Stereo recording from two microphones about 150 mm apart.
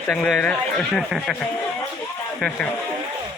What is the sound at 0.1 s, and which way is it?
Speech, 5° left (ahead or behind).